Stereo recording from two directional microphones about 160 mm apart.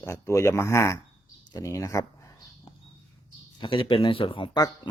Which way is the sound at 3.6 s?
30° left (ahead or behind).